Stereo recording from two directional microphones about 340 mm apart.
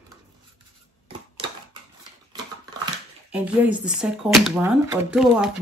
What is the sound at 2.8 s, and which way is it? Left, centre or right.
Speech, centre.